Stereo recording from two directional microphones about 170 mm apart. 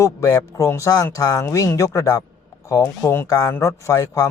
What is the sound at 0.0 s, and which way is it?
Speech, 20° left (ahead or behind).